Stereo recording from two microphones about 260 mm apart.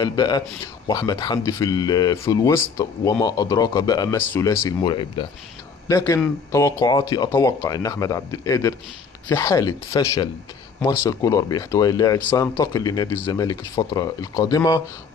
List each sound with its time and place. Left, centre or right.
0.0 s speech: centre